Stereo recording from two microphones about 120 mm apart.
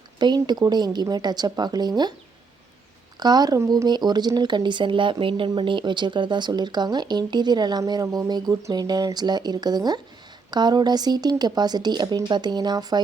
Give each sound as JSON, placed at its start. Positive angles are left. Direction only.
{"t": 0.2, "sound": "speech", "side_deg": -35}
{"t": 3.2, "sound": "speech", "side_deg": -35}